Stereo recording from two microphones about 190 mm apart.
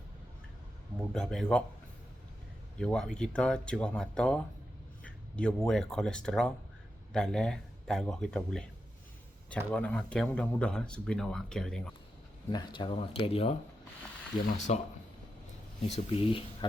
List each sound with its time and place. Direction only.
1.1 s speech: 5° left (ahead or behind)
2.7 s speech: 5° left (ahead or behind)
12.5 s speech: 20° left (ahead or behind); by 14.8 s 40° left (ahead or behind)
15.9 s speech: 30° left (ahead or behind)